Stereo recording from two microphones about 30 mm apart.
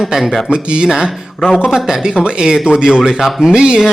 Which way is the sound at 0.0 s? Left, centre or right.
Centre.